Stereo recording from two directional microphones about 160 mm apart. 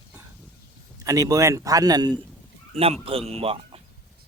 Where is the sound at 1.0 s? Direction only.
20° right (ahead or behind).